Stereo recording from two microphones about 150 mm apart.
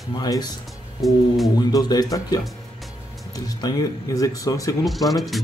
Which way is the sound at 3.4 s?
25° left (ahead or behind).